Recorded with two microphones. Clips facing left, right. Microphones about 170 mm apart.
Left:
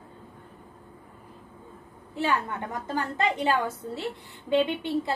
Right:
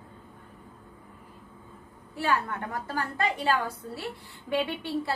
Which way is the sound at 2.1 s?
20° left (ahead or behind).